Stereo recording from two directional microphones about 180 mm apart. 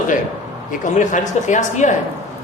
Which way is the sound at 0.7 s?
45° left (ahead or behind).